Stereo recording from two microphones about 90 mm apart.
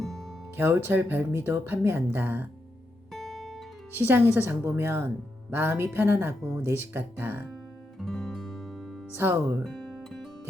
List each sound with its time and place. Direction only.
0.0 s music: 5° left (ahead or behind)
0.5 s speech: 20° right (ahead or behind)
3.1 s guitar: 5° left (ahead or behind)
3.9 s speech: 20° right (ahead or behind)
7.9 s music: centre (ahead or behind)
9.1 s speech: 25° right (ahead or behind)
9.6 s guitar: 5° left (ahead or behind)